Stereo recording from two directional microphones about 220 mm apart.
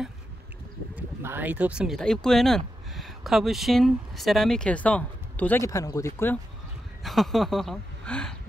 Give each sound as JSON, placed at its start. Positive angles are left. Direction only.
{"t": 0.9, "sound": "a woman's voice", "side_deg": -10}